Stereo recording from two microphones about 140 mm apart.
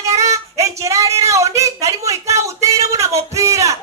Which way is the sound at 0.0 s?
20° right (ahead or behind).